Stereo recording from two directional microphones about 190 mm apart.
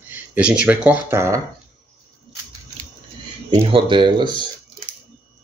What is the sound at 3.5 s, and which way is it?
Speech, 25° right (ahead or behind).